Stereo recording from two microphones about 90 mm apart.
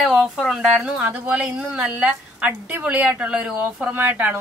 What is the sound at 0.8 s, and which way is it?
A woman's voice, 15° right (ahead or behind).